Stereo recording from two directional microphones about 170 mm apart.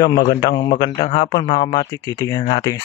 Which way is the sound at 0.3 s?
25° left (ahead or behind).